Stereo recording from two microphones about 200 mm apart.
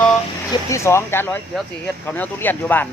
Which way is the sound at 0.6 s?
15° left (ahead or behind).